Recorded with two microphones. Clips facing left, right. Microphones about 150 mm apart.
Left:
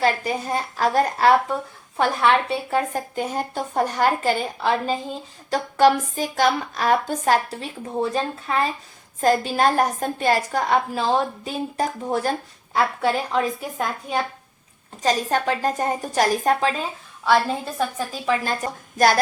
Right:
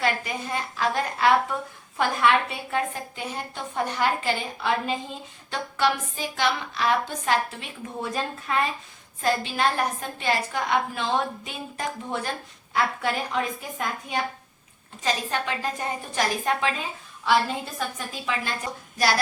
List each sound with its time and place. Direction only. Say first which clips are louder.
0.0 s a woman's voice: left 5 dB; 40° left (ahead or behind)
9.2 s a woman's voice: left 6 dB; 40° left (ahead or behind)
17.7 s a woman's voice: left 6 dB; 35° left (ahead or behind)
18.9 s child singing: left 6 dB; 50° left (ahead or behind)